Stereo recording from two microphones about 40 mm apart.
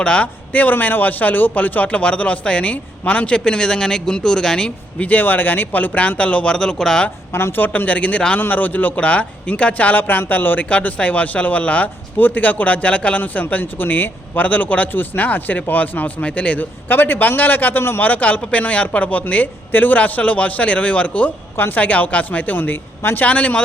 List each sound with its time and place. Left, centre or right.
0.0 s a man's voice: left
1.9 s speech: left
3.3 s speech: left
4.9 s speech: left; by 7.0 s centre
7.3 s speech: left
7.6 s a man's voice: left
10.7 s speech: left
12.1 s a man's voice: left
14.9 s a man's voice: left
16.9 s a man's voice: left
18.0 s speech: left
21.5 s a woman's voice: left
21.8 s speech: left
23.2 s speech: left